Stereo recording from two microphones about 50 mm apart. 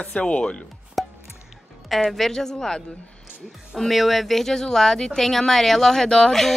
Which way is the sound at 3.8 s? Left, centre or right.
Centre.